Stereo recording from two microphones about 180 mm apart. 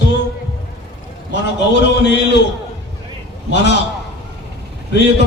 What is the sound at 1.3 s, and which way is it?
Speech, 75° left (ahead or behind).